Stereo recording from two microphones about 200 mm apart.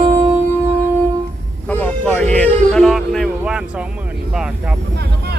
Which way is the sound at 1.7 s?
5° left (ahead or behind).